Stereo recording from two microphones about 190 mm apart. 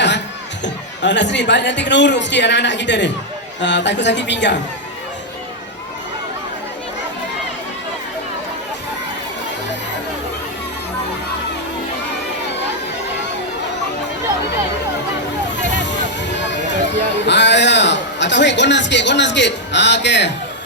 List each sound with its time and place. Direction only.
0.6 s speech: 70° left (ahead or behind)
15.5 s vehicle: 70° left (ahead or behind)
16.0 s a sound: 70° left (ahead or behind)